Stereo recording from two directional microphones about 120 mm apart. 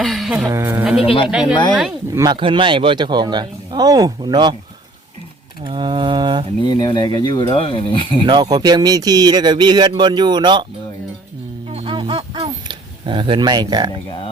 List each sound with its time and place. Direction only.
0.0 s speech: centre (ahead or behind)
0.4 s speech: 20° right (ahead or behind)
1.0 s speech: 45° left (ahead or behind)
1.3 s speech: 5° right (ahead or behind)
2.1 s speech: 35° right (ahead or behind)
2.4 s speech: 45° right (ahead or behind)
5.6 s speech: 40° right (ahead or behind)
6.7 s speech: 40° left (ahead or behind)
8.3 s speech: 35° right (ahead or behind)
11.7 s a sound: 50° right (ahead or behind)